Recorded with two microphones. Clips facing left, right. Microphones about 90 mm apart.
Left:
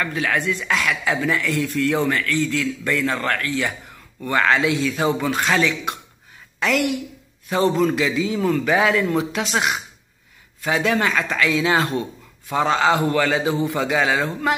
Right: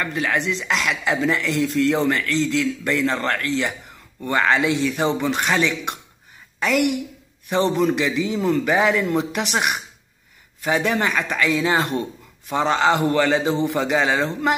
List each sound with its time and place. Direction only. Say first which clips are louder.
0.0 s a man's voice: even; 20° right (ahead or behind)
7.4 s a man's voice: even; 20° right (ahead or behind)
10.6 s a man's voice: left 1 dB; 20° right (ahead or behind)